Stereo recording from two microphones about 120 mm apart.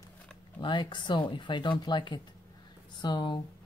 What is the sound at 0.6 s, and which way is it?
Speech, 40° left (ahead or behind).